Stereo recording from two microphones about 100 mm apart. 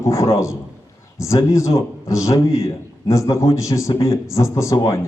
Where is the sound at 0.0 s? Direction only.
30° left (ahead or behind).